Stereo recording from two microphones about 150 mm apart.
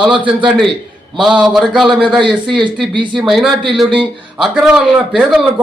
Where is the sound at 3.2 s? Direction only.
Centre (ahead or behind).